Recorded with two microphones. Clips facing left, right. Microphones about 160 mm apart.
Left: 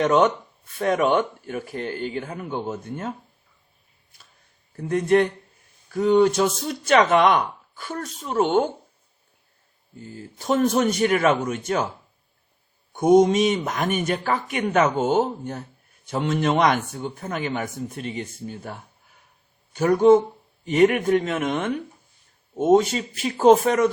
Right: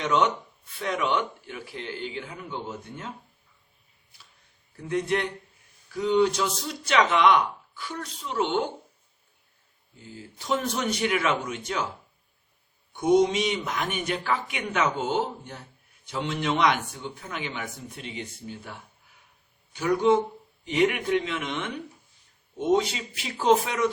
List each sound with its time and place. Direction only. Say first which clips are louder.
0.0 s speech: left 6 dB; 50° left (ahead or behind)
4.8 s speech: left 8 dB; 45° left (ahead or behind)
10.0 s speech: left 5 dB; 45° left (ahead or behind)
12.9 s speech: left 5 dB; 45° left (ahead or behind)